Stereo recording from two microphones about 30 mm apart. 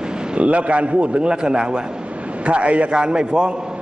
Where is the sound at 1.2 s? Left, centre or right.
Right.